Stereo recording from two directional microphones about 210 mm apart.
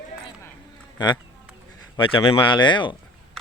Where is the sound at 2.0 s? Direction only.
25° left (ahead or behind).